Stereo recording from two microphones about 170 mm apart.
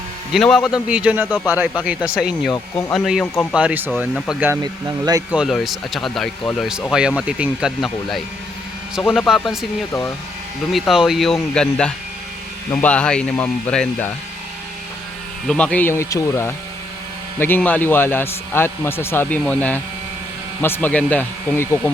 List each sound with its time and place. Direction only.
0.3 s a man's voice: centre (ahead or behind)
4.6 s speech: 25° right (ahead or behind)
5.3 s speech: centre (ahead or behind)
10.7 s a man's voice: centre (ahead or behind)
15.4 s a man's voice: 5° left (ahead or behind)